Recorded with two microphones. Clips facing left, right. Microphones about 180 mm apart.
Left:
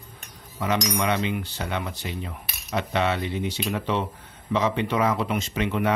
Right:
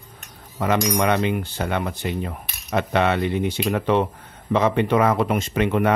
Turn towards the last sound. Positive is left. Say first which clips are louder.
# right 5 dB
turn(degrees=-55)  # may be behind; listen again after turning